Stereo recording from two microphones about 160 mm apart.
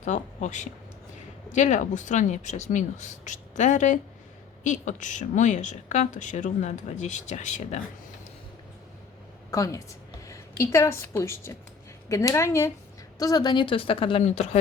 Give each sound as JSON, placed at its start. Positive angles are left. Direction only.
{"t": 0.0, "sound": "a woman's voice", "side_deg": 50}
{"t": 9.5, "sound": "a woman's voice", "side_deg": 20}